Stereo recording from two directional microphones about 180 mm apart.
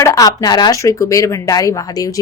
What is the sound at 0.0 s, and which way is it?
A woman's voice, 20° left (ahead or behind).